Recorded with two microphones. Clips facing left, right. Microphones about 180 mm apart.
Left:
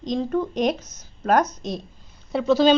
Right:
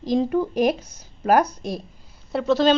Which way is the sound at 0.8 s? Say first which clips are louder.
Right 1 dB; 30° right (ahead or behind).